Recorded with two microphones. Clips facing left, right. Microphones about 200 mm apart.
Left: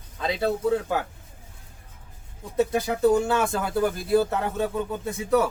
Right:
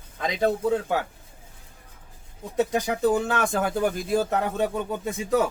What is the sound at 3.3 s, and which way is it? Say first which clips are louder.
Speech: even; 20° right (ahead or behind).